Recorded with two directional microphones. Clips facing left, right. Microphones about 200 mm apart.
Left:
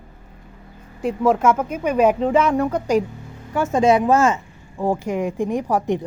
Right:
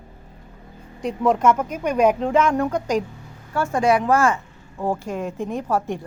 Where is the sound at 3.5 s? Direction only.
20° left (ahead or behind).